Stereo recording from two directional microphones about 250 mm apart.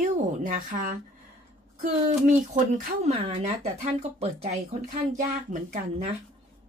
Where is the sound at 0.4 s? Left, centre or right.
Right.